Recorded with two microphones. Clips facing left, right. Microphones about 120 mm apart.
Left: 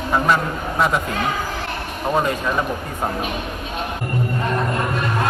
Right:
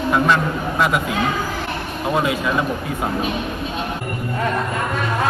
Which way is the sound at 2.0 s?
5° right (ahead or behind).